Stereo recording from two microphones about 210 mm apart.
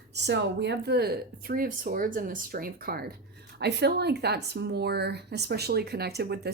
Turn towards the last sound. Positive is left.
turn(degrees=-50)  # may be behind; listen again after turning